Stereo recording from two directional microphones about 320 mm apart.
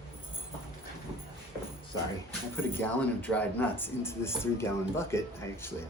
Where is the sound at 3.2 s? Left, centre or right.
Centre.